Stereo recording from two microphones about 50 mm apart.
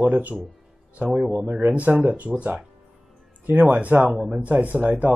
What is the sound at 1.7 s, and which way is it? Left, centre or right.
Speech, right.